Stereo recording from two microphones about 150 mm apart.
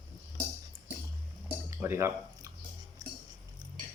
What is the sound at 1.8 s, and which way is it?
Speech, 20° right (ahead or behind).